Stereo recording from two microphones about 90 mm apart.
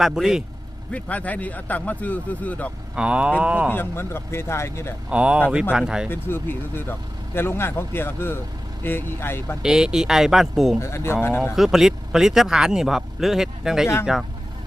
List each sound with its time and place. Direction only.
0.0 s speech: 5° right (ahead or behind)
0.9 s speech: 15° left (ahead or behind)
2.9 s speech: 10° right (ahead or behind)
3.7 s a man's voice: 25° left (ahead or behind)
5.0 s speech: 10° right (ahead or behind)
6.1 s a man's voice: 25° left (ahead or behind)
9.6 s speech: 5° right (ahead or behind)
10.8 s a man's voice: 30° left (ahead or behind)
11.5 s speech: 5° right (ahead or behind)